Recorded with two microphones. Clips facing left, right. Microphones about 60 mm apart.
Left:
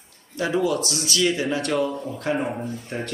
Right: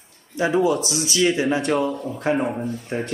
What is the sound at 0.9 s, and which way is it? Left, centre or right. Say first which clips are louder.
Speech: right 3 dB; right.